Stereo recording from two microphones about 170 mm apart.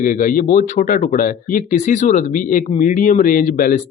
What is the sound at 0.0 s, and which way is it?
Speech, 50° left (ahead or behind).